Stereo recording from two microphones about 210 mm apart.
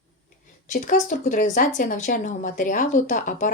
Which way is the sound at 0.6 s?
35° left (ahead or behind).